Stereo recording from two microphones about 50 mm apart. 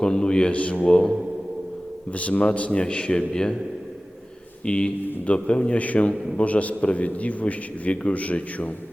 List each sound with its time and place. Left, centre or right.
0.0 s speech: centre
0.9 s a man's voice: centre
2.1 s a man's voice: left
4.6 s a man's voice: left